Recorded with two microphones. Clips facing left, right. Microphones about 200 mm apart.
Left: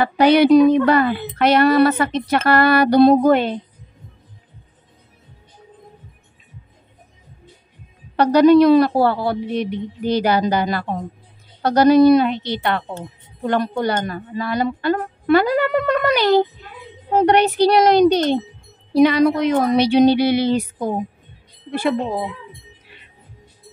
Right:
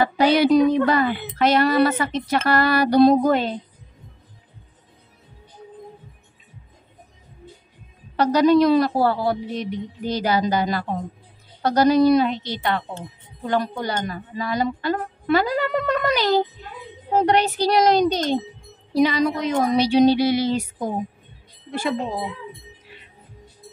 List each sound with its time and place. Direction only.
0.0 s speech: 60° left (ahead or behind)
8.2 s speech: 60° left (ahead or behind)